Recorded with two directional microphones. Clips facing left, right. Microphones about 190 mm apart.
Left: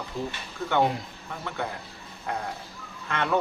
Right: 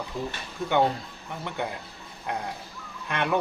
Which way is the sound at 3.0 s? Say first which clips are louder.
Even; 15° right (ahead or behind).